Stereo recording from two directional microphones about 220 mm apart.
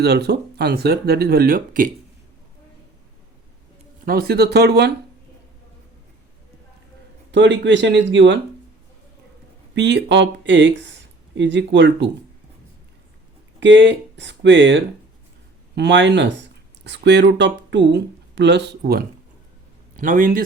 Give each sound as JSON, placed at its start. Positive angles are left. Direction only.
{"t": 0.0, "sound": "speech", "side_deg": -50}
{"t": 4.0, "sound": "speech", "side_deg": -45}
{"t": 7.3, "sound": "speech", "side_deg": -55}
{"t": 9.7, "sound": "speech", "side_deg": -50}
{"t": 13.6, "sound": "a man's voice", "side_deg": -55}